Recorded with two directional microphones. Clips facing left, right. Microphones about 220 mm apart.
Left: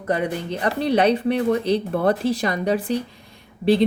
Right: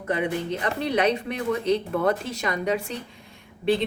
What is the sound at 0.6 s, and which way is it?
Speech, 35° left (ahead or behind).